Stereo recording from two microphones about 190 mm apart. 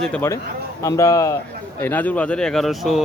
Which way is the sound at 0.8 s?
15° left (ahead or behind).